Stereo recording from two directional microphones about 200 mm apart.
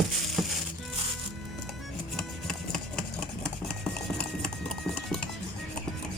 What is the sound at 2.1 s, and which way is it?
Music, centre (ahead or behind).